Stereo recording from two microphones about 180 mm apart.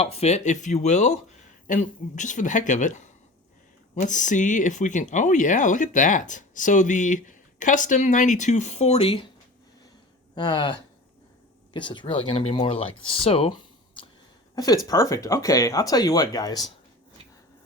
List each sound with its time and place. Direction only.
0.0 s speech: 35° left (ahead or behind)
10.3 s speech: 25° left (ahead or behind)